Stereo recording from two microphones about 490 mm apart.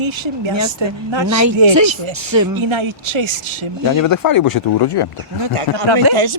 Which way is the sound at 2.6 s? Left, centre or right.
Right.